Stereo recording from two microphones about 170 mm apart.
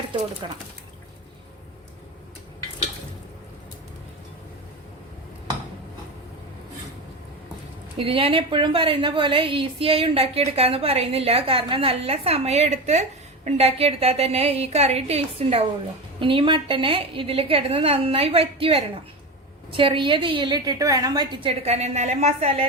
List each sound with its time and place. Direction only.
0.4 s a woman's voice: 30° right (ahead or behind)
7.9 s a woman's voice: 35° right (ahead or behind)
21.6 s a woman's voice: 40° right (ahead or behind)